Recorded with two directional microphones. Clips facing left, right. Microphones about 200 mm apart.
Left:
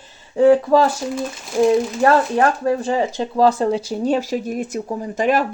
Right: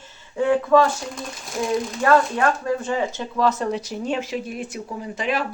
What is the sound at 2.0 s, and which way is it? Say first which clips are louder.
Speech: left 1 dB; 35° left (ahead or behind).